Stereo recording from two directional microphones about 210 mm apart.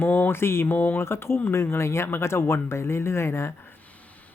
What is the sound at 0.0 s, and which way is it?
Speech, 10° left (ahead or behind).